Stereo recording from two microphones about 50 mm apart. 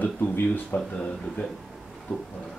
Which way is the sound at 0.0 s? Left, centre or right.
Left.